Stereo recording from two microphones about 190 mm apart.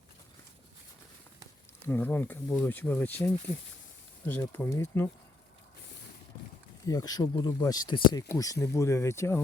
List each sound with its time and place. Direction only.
1.9 s speech: 10° left (ahead or behind)
6.8 s speech: 20° left (ahead or behind)